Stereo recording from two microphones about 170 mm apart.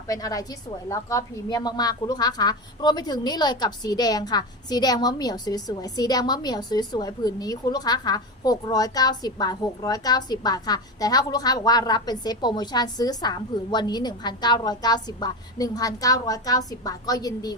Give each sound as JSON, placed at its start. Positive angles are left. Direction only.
{"t": 0.1, "sound": "a woman's voice", "side_deg": 20}